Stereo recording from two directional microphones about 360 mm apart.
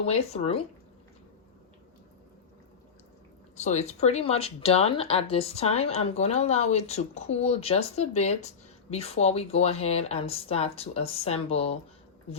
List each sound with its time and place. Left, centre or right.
0.0 s speech: centre
3.5 s speech: centre